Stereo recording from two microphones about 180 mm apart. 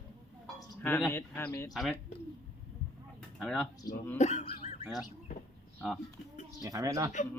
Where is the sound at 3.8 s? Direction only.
55° left (ahead or behind).